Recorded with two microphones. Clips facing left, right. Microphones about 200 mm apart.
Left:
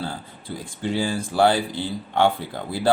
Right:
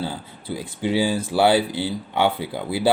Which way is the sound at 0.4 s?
5° right (ahead or behind).